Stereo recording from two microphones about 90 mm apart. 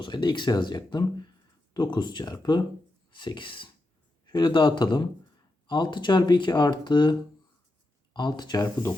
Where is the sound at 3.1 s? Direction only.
65° left (ahead or behind).